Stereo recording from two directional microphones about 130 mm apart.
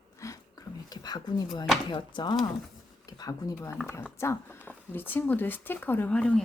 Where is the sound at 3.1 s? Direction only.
30° left (ahead or behind).